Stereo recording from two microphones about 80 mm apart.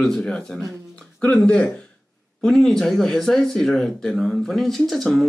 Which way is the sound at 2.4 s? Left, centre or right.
Centre.